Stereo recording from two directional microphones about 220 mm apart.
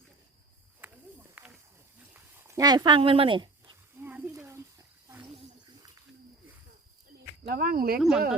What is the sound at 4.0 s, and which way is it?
Roaring cats, 10° right (ahead or behind).